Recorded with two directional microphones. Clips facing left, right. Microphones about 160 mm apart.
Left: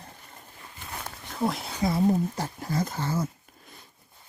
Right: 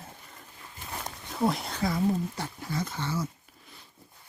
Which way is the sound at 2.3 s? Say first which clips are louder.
Left 4 dB; 40° left (ahead or behind).